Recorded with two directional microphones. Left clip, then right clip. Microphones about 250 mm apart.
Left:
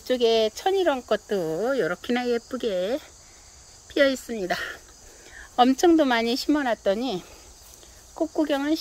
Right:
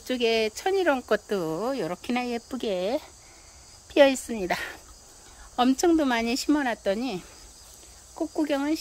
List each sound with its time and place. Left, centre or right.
0.0 s speech: centre
1.7 s speech: right
2.2 s speech: centre